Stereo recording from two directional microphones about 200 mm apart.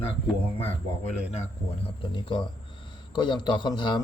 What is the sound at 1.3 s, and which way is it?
A man's voice, 30° left (ahead or behind).